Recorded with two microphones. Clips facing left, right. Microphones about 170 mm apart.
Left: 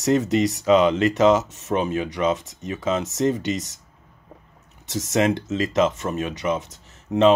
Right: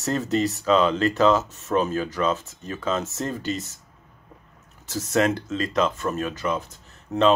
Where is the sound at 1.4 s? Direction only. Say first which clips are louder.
Left 1 dB; 75° left (ahead or behind).